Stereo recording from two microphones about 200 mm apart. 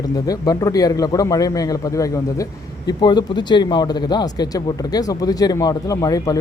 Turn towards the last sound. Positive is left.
turn(degrees=15)  # may be behind; listen again after turning